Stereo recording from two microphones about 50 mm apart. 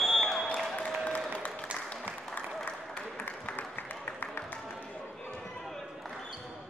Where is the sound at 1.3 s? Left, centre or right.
Left.